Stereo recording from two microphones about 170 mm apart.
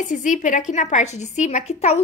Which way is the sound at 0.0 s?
45° left (ahead or behind).